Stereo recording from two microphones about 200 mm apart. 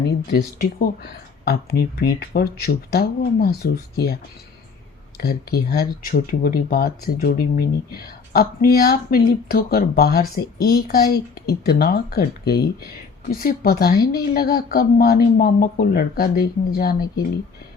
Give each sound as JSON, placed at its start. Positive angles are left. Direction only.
{"t": 0.3, "sound": "speech", "side_deg": 50}